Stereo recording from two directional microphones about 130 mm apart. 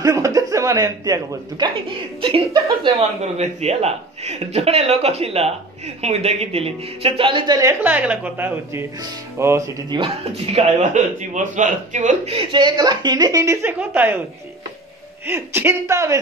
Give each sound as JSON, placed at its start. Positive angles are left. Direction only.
{"t": 0.0, "sound": "chuckle", "side_deg": -25}
{"t": 1.9, "sound": "a man's voice", "side_deg": -45}
{"t": 3.2, "sound": "a man's voice", "side_deg": -55}
{"t": 7.8, "sound": "a woman's voice", "side_deg": -10}
{"t": 9.8, "sound": "a man's voice", "side_deg": -40}
{"t": 10.9, "sound": "speech", "side_deg": -70}
{"t": 12.3, "sound": "a woman's voice", "side_deg": -40}
{"t": 15.2, "sound": "a woman's voice", "side_deg": -20}